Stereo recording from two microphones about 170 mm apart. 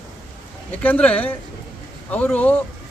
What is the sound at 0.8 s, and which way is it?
A man's voice, 10° left (ahead or behind).